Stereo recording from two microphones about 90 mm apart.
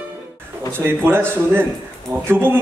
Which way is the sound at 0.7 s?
25° right (ahead or behind).